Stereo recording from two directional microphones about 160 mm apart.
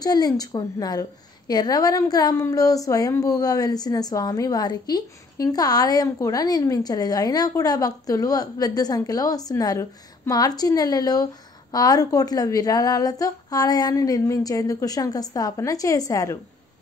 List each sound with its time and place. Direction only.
0.0 s a woman's voice: 25° left (ahead or behind)